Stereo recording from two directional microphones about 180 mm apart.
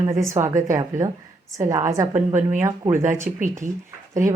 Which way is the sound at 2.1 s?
35° right (ahead or behind).